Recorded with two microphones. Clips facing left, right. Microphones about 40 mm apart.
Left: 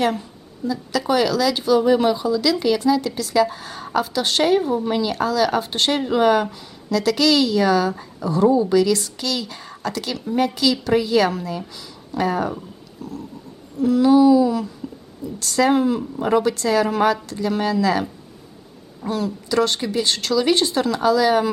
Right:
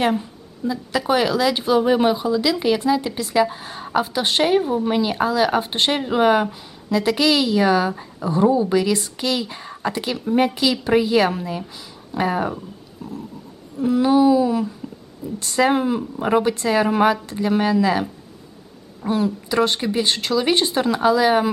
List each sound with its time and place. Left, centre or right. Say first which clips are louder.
0.1 s a woman's voice: right 4 dB; centre
13.0 s a sound: even; right
13.7 s a woman's voice: left 2 dB; right
19.0 s a woman's voice: right 3 dB; right